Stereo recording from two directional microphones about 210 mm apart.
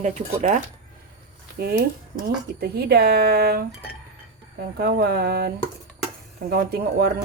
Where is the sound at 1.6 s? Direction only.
45° right (ahead or behind).